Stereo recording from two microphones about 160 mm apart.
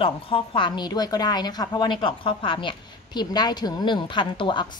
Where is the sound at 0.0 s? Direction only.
35° left (ahead or behind).